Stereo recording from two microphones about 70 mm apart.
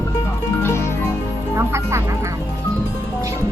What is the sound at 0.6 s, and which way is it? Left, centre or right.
Music, left.